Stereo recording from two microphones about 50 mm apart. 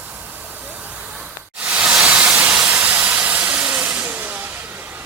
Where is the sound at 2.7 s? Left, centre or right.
Right.